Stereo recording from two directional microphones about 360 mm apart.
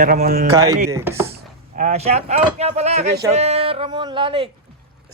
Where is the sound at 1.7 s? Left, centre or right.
Centre.